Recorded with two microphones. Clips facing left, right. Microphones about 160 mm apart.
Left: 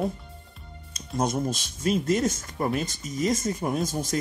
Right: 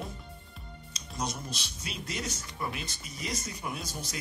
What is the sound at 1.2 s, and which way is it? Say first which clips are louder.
Speech: left 10 dB; 50° left (ahead or behind).